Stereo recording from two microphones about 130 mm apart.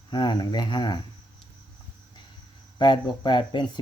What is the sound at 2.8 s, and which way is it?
Speech, 35° left (ahead or behind).